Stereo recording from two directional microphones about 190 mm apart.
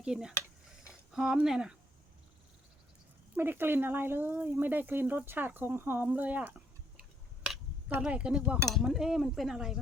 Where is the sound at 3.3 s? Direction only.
10° right (ahead or behind).